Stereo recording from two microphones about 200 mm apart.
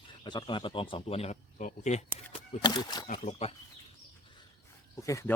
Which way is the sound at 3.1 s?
30° left (ahead or behind).